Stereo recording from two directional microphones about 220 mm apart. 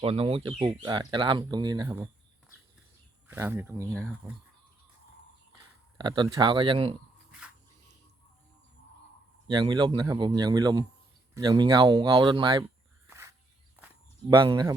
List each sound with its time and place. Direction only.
0.0 s speech: 25° right (ahead or behind)
3.2 s speech: 10° right (ahead or behind)
6.0 s speech: 20° right (ahead or behind)
9.5 s speech: 20° right (ahead or behind)
13.1 s a sound: 10° right (ahead or behind)
14.3 s speech: 20° right (ahead or behind)